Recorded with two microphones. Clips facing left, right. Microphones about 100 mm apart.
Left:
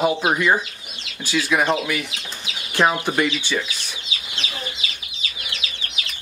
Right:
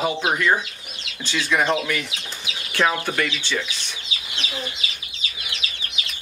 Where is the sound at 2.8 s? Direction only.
20° left (ahead or behind).